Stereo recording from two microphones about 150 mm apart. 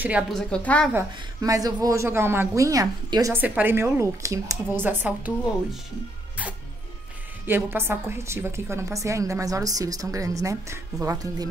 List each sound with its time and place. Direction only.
0.3 s a woman's voice: 5° left (ahead or behind)
0.9 s a woman's voice: 20° right (ahead or behind)
3.3 s a woman's voice: 10° right (ahead or behind)
7.4 s a woman's voice: 15° right (ahead or behind)